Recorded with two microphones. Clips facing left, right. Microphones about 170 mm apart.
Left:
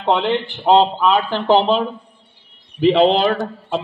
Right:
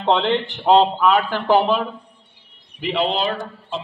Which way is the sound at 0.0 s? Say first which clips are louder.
Left 1 dB; 15° left (ahead or behind).